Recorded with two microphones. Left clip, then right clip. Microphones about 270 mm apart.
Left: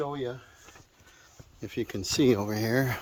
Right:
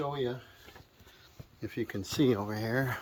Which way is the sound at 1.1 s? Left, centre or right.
Centre.